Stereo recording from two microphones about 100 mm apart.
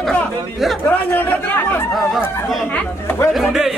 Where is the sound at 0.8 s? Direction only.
15° left (ahead or behind).